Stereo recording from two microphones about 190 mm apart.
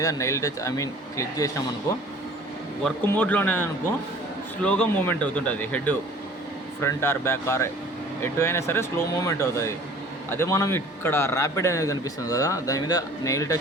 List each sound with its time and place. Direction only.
0.0 s a man's voice: 15° left (ahead or behind)
2.8 s a man's voice: 10° left (ahead or behind)